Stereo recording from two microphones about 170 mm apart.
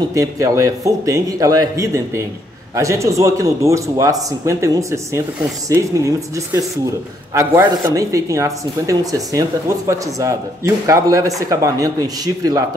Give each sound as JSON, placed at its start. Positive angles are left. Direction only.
{"t": 0.1, "sound": "a man's voice", "side_deg": -20}